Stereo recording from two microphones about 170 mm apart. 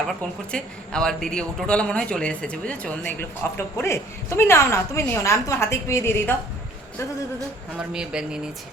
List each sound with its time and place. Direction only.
0.1 s a man's voice: 5° left (ahead or behind)
7.7 s a man's voice: 5° right (ahead or behind)